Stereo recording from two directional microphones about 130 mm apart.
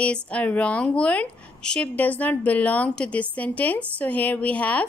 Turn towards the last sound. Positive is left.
turn(degrees=10)  # may be behind; listen again after turning